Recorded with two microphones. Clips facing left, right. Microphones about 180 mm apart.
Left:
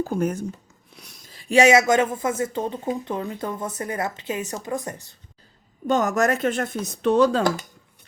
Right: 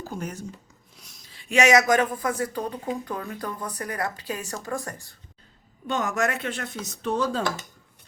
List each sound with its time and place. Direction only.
0.0 s speech: 55° left (ahead or behind)
0.9 s a sound: 65° left (ahead or behind)
1.3 s speech: 35° left (ahead or behind); by 5.1 s 20° left (ahead or behind)
5.9 s speech: 45° left (ahead or behind); by 7.4 s 70° left (ahead or behind)